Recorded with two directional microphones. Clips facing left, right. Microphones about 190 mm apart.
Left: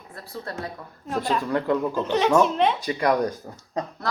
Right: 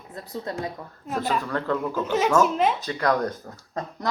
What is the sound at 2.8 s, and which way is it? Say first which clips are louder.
Speech: left 2 dB; 15° left (ahead or behind).